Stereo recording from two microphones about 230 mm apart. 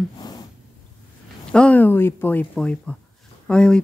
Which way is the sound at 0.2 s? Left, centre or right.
Centre.